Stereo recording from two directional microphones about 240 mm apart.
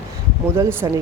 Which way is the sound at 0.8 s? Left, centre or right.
Centre.